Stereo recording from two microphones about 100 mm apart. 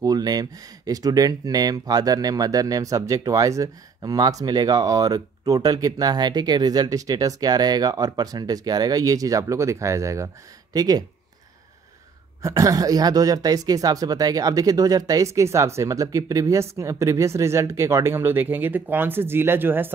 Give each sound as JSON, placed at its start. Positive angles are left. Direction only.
{"t": 0.0, "sound": "speech", "side_deg": -40}
{"t": 12.4, "sound": "speech", "side_deg": -35}